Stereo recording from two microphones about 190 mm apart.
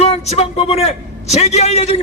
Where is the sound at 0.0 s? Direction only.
35° left (ahead or behind).